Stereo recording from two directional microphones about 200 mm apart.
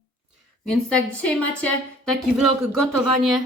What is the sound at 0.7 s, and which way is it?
Speech, 5° left (ahead or behind).